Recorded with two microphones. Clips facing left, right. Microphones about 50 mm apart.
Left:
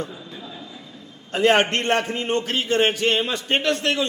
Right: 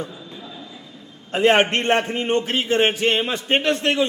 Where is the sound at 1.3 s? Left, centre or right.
Centre.